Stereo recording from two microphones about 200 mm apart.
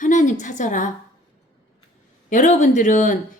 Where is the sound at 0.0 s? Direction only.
40° left (ahead or behind).